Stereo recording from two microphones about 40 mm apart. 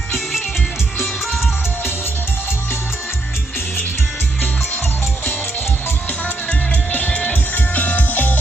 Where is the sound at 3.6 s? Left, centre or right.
Left.